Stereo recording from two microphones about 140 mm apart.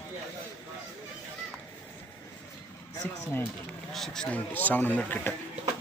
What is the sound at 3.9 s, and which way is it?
A man's voice, centre (ahead or behind).